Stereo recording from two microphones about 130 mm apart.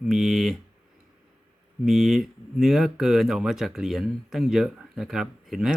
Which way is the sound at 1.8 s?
Centre (ahead or behind).